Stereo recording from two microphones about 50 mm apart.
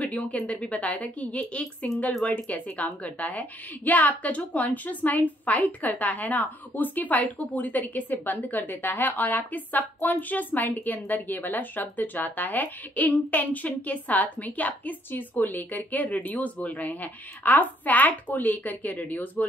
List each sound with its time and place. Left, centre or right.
0.0 s a woman's voice: left